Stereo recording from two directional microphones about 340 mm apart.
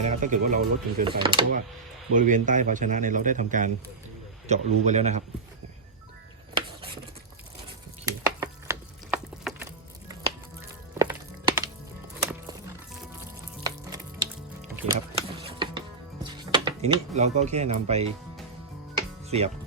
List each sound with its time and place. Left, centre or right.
0.0 s speech: right
8.0 s a sound: centre
10.9 s music: centre
13.7 s water: centre
15.4 s music: centre